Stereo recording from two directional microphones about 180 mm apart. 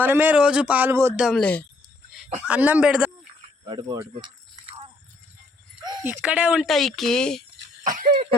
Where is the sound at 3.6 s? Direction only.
25° right (ahead or behind).